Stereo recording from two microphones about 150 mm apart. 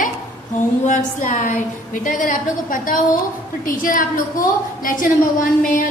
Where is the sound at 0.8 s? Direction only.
55° left (ahead or behind).